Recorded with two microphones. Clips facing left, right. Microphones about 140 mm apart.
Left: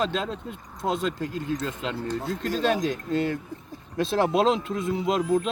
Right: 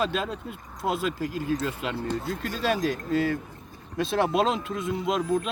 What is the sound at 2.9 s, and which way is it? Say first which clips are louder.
Speech: even; 5° right (ahead or behind).